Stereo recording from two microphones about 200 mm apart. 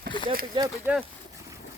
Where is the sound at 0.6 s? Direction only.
20° right (ahead or behind).